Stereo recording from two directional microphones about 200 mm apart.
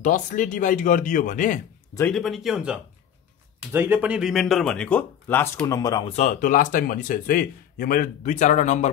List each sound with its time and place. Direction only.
0.0 s speech: 40° left (ahead or behind)
2.0 s speech: 5° left (ahead or behind); by 6.1 s 20° left (ahead or behind)
6.1 s speech: 40° left (ahead or behind)